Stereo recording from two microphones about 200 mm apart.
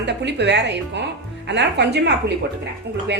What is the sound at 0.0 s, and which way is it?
Speech, 60° right (ahead or behind).